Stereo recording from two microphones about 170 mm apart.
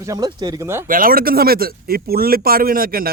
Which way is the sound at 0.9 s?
55° right (ahead or behind).